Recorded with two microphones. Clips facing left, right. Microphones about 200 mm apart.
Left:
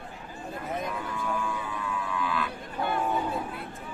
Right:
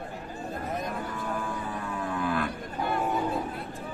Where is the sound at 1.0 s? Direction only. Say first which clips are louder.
Left 1 dB; 45° right (ahead or behind).